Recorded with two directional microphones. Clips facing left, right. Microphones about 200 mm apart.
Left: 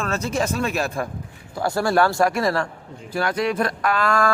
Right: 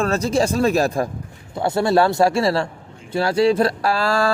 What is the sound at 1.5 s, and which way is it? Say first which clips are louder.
Speech: right 3 dB; 25° right (ahead or behind).